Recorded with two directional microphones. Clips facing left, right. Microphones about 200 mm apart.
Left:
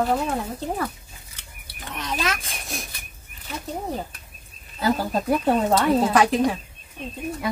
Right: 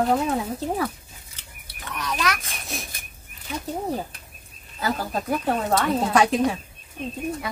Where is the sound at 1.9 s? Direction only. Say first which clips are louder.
Right 1 dB; 25° left (ahead or behind).